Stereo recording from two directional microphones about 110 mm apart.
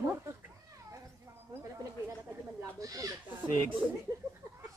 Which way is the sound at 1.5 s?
25° right (ahead or behind).